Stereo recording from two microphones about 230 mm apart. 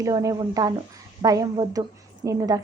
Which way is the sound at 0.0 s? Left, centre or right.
Centre.